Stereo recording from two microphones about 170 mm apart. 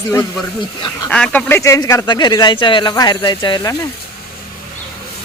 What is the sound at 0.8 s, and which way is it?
Speech, 25° left (ahead or behind).